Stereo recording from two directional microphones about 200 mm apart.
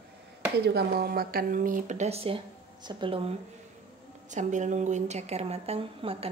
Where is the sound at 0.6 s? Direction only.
50° right (ahead or behind); by 3.3 s 25° right (ahead or behind).